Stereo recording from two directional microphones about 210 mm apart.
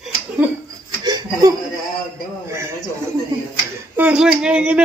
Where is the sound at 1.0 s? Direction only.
20° right (ahead or behind).